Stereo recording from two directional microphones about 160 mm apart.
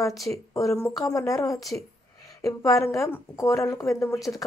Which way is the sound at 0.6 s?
15° left (ahead or behind).